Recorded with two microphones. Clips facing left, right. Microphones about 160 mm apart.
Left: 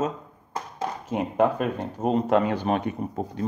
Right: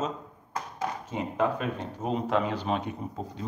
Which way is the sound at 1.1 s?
55° left (ahead or behind).